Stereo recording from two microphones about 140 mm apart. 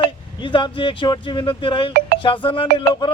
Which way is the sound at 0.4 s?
35° left (ahead or behind).